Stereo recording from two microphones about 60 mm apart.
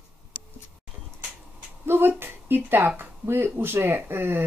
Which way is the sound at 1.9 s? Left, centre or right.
Right.